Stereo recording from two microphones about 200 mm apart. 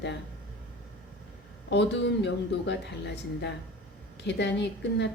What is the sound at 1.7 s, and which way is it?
A woman's voice, 60° left (ahead or behind).